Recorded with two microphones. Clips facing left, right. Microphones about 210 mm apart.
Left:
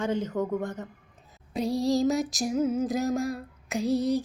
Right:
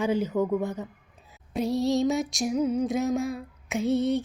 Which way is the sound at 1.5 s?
Centre (ahead or behind).